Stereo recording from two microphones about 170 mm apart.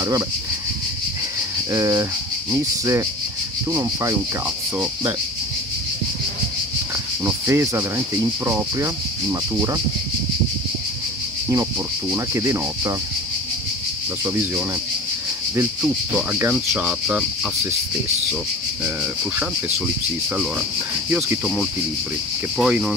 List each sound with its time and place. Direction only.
1.7 s speech: 20° right (ahead or behind)
7.2 s speech: 15° right (ahead or behind)
12.1 s speech: 15° right (ahead or behind)
14.2 s speech: 15° right (ahead or behind)
15.8 s speech: 10° right (ahead or behind)
21.1 s speech: 5° right (ahead or behind)